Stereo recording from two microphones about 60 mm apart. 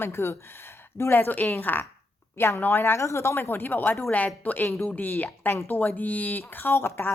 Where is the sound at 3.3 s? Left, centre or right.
Left.